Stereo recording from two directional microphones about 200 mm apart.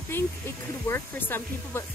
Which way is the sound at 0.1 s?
10° left (ahead or behind).